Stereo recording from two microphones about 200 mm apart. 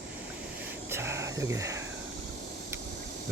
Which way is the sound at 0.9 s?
10° right (ahead or behind).